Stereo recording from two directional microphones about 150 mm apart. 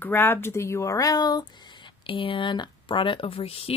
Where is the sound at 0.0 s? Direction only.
15° left (ahead or behind).